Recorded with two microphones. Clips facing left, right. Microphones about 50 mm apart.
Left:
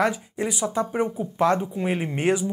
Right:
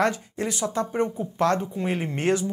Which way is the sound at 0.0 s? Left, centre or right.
Centre.